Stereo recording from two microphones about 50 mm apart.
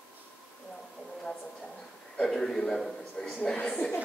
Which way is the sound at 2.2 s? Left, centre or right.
Centre.